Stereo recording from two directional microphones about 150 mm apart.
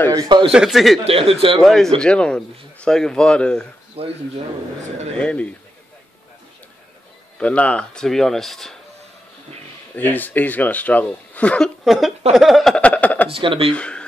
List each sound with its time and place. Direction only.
0.1 s speech: 30° right (ahead or behind)
0.5 s speech: 5° right (ahead or behind)
1.0 s speech: 40° right (ahead or behind)
1.6 s speech: 5° left (ahead or behind)
4.0 s speech: 40° right (ahead or behind)
5.2 s speech: 10° left (ahead or behind)
7.3 s speech: 10° left (ahead or behind)
9.9 s speech: 10° left (ahead or behind)
13.3 s speech: 35° right (ahead or behind)
13.7 s speech: 5° left (ahead or behind)